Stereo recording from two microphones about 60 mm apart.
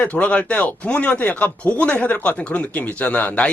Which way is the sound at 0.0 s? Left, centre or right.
Left.